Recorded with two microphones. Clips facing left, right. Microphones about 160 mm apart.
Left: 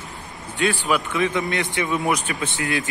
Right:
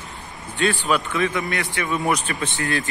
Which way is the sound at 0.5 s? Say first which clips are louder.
Even; 15° left (ahead or behind).